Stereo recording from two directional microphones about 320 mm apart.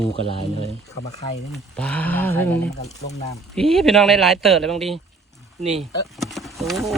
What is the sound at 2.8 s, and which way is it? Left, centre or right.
Speech, centre.